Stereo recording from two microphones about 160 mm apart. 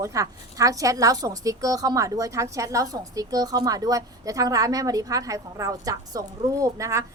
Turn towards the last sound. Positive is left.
turn(degrees=-20)  # may be behind; listen again after turning